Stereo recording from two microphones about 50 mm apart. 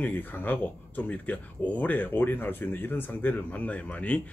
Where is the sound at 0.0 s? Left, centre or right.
Left.